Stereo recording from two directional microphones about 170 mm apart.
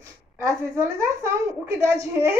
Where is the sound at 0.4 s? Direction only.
15° right (ahead or behind).